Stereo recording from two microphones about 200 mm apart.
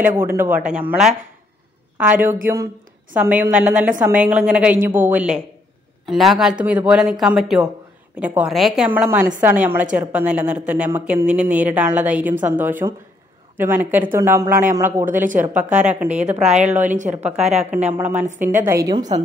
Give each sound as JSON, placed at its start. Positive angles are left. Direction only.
{"t": 0.0, "sound": "a woman's voice", "side_deg": -10}
{"t": 15.7, "sound": "a woman's voice", "side_deg": -35}
{"t": 17.8, "sound": "a woman's voice", "side_deg": -10}